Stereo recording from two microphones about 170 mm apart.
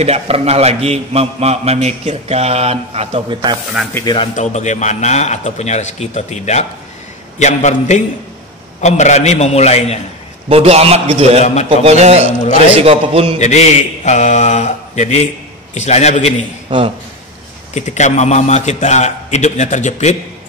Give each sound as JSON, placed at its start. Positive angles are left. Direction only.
{"t": 0.0, "sound": "a man's voice", "side_deg": -40}
{"t": 3.9, "sound": "speech", "side_deg": 25}
{"t": 4.4, "sound": "a man's voice", "side_deg": 45}
{"t": 10.5, "sound": "a man's voice", "side_deg": -35}
{"t": 13.4, "sound": "speech", "side_deg": 40}
{"t": 17.7, "sound": "a man's voice", "side_deg": 45}